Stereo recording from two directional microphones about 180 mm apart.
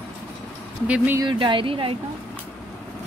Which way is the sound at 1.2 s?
25° right (ahead or behind).